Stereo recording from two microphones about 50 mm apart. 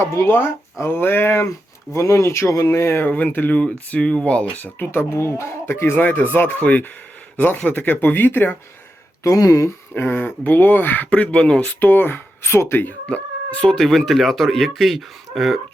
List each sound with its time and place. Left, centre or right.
0.0 s speech: left
1.5 s speech: left
3.5 s speech: left
4.9 s speech: left
6.0 s speech: left
9.2 s speech: left
9.9 s speech: left
11.1 s speech: left
11.6 s speech: left
12.5 s speech: left
13.1 s a sound: left
13.7 s speech: centre